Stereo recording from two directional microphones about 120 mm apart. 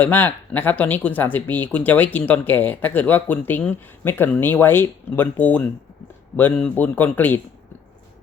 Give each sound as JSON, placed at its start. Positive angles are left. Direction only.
{"t": 0.0, "sound": "speech", "side_deg": 15}